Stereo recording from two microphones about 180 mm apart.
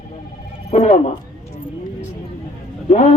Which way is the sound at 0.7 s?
40° left (ahead or behind).